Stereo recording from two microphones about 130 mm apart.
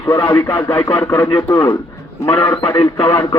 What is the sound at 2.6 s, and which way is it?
Speech, 35° left (ahead or behind).